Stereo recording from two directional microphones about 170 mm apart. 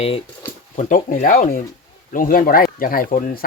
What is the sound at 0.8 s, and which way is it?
Speech, 50° left (ahead or behind).